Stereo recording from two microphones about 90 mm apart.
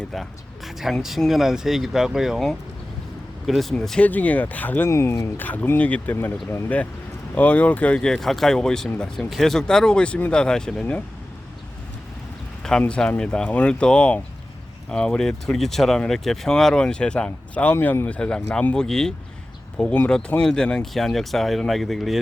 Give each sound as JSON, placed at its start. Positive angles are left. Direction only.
{"t": 0.1, "sound": "speech", "side_deg": 0}
{"t": 4.9, "sound": "speech", "side_deg": 30}
{"t": 5.4, "sound": "speech", "side_deg": 20}
{"t": 7.3, "sound": "speech", "side_deg": 15}
{"t": 12.9, "sound": "speech", "side_deg": 10}